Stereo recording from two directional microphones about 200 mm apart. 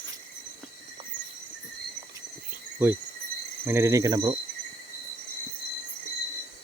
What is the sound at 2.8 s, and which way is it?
Cricket, 10° right (ahead or behind).